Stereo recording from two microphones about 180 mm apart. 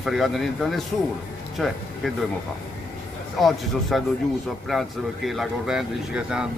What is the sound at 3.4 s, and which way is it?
Speech, centre (ahead or behind).